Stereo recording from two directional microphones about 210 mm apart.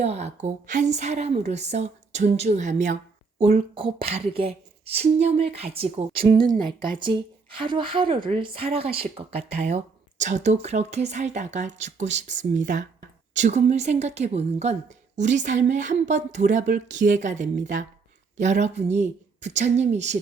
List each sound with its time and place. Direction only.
0.0 s a woman's voice: 30° right (ahead or behind)
7.6 s a woman's voice: 25° right (ahead or behind)